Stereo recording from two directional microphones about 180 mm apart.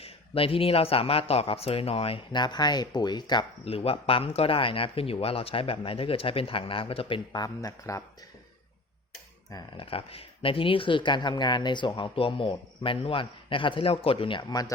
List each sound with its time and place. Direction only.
0.0 s speech: 30° left (ahead or behind)
9.5 s speech: 25° left (ahead or behind)